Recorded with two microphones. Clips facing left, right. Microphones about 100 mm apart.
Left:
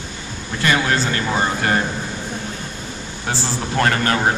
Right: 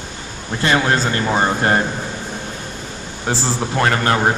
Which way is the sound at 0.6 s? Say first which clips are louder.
Right 2 dB; 30° right (ahead or behind).